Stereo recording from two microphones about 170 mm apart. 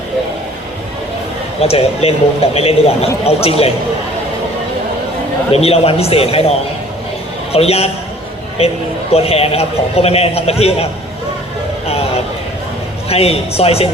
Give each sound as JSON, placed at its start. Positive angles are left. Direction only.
{"t": 1.6, "sound": "a man's voice", "side_deg": 35}
{"t": 5.5, "sound": "a man's voice", "side_deg": 35}
{"t": 7.5, "sound": "a man's voice", "side_deg": 35}
{"t": 11.9, "sound": "a sound", "side_deg": 35}
{"t": 13.1, "sound": "a man's voice", "side_deg": 35}